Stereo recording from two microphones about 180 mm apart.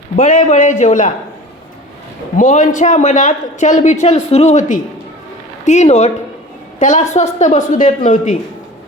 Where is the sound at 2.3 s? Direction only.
45° left (ahead or behind).